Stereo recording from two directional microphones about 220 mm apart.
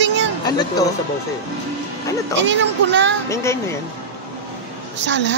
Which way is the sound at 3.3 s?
15° left (ahead or behind).